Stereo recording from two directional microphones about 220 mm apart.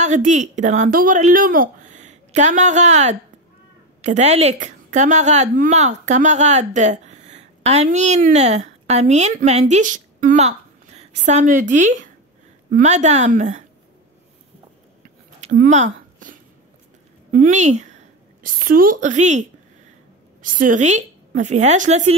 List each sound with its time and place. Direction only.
0.0 s a woman's voice: 35° right (ahead or behind)
15.4 s a sound: 35° right (ahead or behind)
17.3 s a woman's voice: 35° right (ahead or behind)
20.4 s a woman's voice: 40° right (ahead or behind)